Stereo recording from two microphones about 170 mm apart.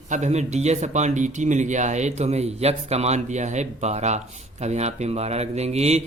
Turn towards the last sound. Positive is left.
turn(degrees=-40)  # may be behind; listen again after turning